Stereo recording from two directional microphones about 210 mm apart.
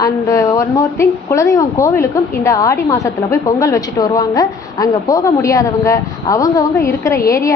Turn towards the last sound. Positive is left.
turn(degrees=15)  # may be behind; listen again after turning